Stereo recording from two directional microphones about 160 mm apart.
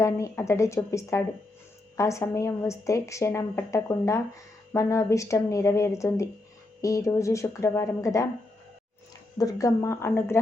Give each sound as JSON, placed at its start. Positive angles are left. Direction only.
{"t": 0.0, "sound": "a woman's voice", "side_deg": 20}
{"t": 9.4, "sound": "speech", "side_deg": 20}